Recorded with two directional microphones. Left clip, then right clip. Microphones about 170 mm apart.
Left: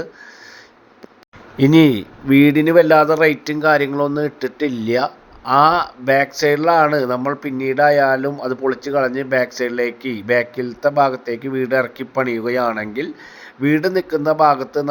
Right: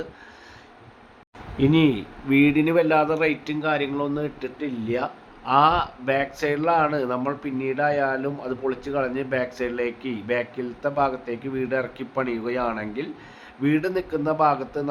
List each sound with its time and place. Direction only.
1.5 s speech: 40° left (ahead or behind)